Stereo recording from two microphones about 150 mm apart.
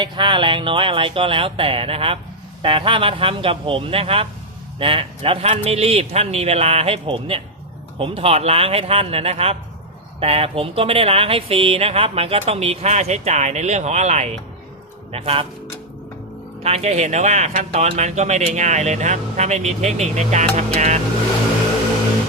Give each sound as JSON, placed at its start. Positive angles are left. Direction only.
{"t": 0.0, "sound": "speech", "side_deg": -30}
{"t": 16.6, "sound": "speech", "side_deg": -45}